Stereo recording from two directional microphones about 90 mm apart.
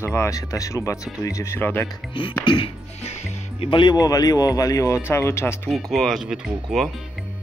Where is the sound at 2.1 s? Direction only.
70° left (ahead or behind).